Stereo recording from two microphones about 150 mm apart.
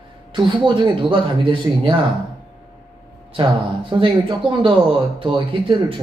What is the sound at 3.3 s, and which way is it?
Speech, 35° right (ahead or behind).